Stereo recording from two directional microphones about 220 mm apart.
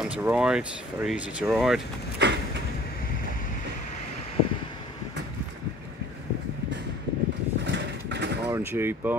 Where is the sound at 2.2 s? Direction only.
50° right (ahead or behind).